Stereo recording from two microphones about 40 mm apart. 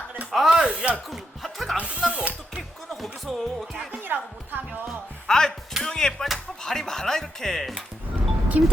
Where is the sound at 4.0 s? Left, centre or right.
Right.